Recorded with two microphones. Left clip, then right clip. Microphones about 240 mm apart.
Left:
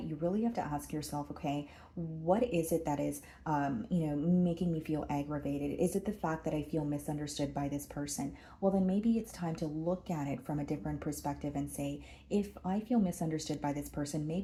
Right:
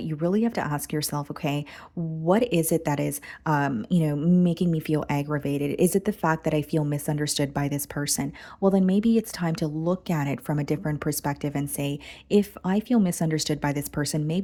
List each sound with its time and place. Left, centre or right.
0.1 s a woman's voice: right